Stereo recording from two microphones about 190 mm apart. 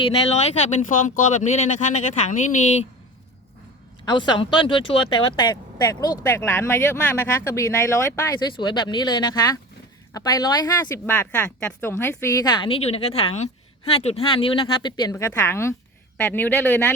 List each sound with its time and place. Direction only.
0.0 s speech: 30° left (ahead or behind)
4.0 s a woman's voice: 25° left (ahead or behind)